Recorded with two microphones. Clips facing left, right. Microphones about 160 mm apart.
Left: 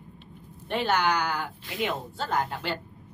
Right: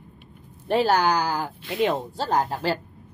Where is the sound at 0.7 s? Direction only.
35° right (ahead or behind).